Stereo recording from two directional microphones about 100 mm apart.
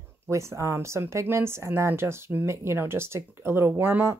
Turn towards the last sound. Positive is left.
turn(degrees=-25)  # may be behind; listen again after turning